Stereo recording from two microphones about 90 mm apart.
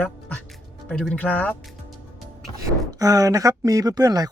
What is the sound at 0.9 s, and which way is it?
Speech, 5° left (ahead or behind).